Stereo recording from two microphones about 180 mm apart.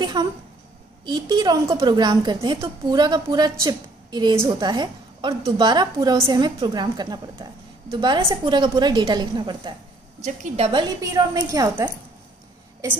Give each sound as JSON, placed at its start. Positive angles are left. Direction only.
{"t": 0.0, "sound": "a woman's voice", "side_deg": -25}
{"t": 10.2, "sound": "a woman's voice", "side_deg": -40}